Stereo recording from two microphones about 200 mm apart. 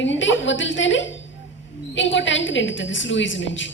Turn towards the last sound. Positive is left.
turn(degrees=70)  # may be behind; listen again after turning